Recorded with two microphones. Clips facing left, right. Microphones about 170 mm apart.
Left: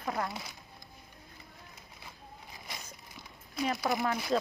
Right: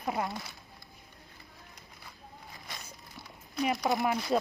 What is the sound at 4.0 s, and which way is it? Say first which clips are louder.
Speech: right 2 dB; 15° right (ahead or behind).